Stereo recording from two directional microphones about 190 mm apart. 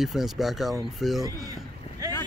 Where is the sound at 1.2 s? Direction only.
20° right (ahead or behind).